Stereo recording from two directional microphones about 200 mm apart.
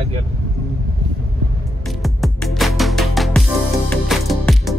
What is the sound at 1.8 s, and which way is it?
Music, centre (ahead or behind).